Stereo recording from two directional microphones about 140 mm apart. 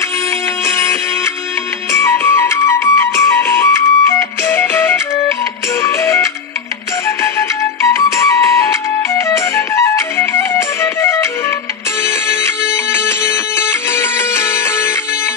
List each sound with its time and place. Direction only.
0.7 s music: 20° left (ahead or behind)
7.3 s music: 20° left (ahead or behind)
12.9 s music: 15° left (ahead or behind)